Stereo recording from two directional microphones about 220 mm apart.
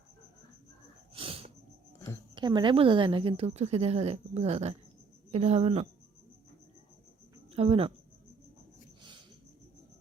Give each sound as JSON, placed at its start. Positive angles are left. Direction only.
{"t": 1.1, "sound": "a sound", "side_deg": -25}
{"t": 2.3, "sound": "a woman's voice", "side_deg": -20}
{"t": 7.5, "sound": "speech", "side_deg": -25}